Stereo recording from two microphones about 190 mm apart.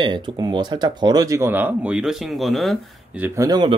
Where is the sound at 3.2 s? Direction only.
15° right (ahead or behind).